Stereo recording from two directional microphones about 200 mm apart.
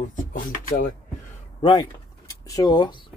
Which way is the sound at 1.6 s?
20° left (ahead or behind).